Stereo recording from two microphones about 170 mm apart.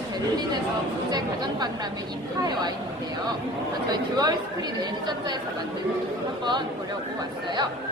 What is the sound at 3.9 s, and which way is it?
Speech, 25° right (ahead or behind).